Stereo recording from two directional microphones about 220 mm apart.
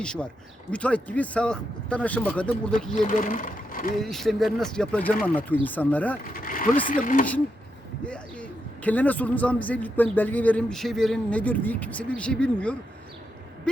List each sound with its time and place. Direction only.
0.0 s speech: 5° left (ahead or behind)
2.9 s speech: 35° left (ahead or behind)
4.0 s a man's voice: centre (ahead or behind)
6.3 s vehicle: 40° left (ahead or behind)
6.8 s speech: 35° left (ahead or behind)
8.0 s a man's voice: 5° left (ahead or behind)